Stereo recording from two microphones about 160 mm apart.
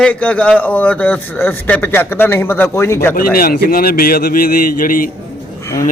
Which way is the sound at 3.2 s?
65° left (ahead or behind).